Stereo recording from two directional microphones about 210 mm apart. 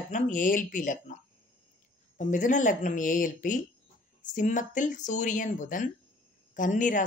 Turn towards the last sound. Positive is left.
turn(degrees=40)  # may be behind; listen again after turning